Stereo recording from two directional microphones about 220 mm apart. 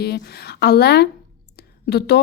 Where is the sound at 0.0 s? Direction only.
45° left (ahead or behind).